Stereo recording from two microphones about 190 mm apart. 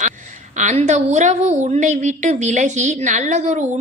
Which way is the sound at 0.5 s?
40° right (ahead or behind).